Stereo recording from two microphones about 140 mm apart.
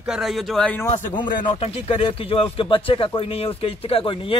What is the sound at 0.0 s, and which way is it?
Speech, 5° right (ahead or behind).